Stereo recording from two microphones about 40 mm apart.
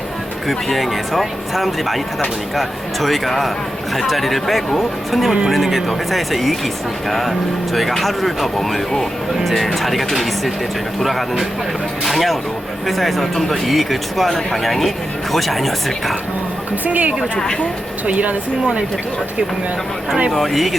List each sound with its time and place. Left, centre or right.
0.4 s speech: centre
16.8 s speech: right
20.3 s speech: centre